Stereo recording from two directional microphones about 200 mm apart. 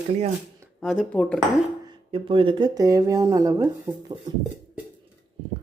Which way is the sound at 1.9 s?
25° right (ahead or behind).